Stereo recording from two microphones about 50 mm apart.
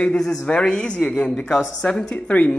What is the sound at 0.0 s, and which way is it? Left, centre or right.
A woman's voice, centre.